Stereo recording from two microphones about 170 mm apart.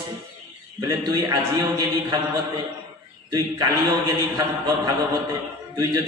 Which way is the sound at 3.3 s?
20° right (ahead or behind).